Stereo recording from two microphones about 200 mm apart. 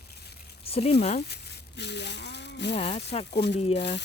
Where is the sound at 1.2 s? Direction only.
55° left (ahead or behind).